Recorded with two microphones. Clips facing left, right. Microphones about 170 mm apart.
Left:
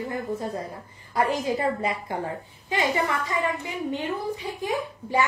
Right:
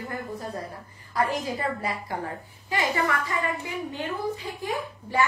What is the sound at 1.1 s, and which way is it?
A woman's voice, 25° left (ahead or behind).